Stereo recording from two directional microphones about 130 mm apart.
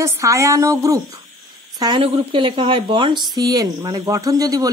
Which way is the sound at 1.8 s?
40° right (ahead or behind).